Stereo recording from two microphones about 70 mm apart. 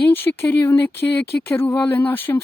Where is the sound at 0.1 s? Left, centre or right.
Left.